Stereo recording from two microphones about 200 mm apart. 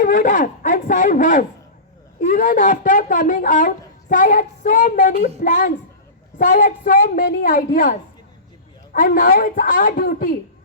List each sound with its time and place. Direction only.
0.0 s a woman's voice: 40° left (ahead or behind)